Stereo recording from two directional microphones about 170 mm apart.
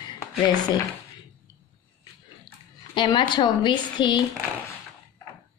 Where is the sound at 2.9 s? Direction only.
30° left (ahead or behind).